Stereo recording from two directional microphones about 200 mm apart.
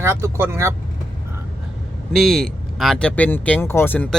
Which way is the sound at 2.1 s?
Centre (ahead or behind).